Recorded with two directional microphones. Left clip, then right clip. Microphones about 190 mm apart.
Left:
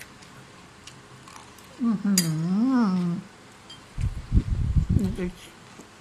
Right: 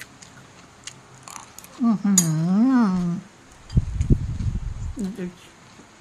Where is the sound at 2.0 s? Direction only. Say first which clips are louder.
Right 4 dB; 30° right (ahead or behind).